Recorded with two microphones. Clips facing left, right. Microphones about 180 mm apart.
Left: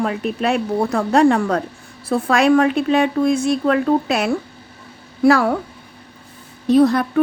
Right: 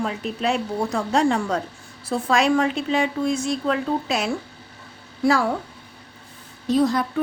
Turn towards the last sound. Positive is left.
turn(degrees=60)  # may be behind; listen again after turning